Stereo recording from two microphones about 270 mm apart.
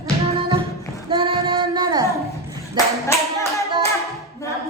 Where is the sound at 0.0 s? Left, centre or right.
Centre.